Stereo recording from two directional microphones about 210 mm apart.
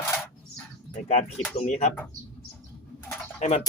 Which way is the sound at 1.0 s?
30° left (ahead or behind).